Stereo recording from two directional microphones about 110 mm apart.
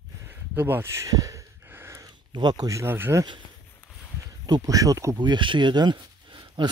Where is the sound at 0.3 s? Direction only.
20° right (ahead or behind).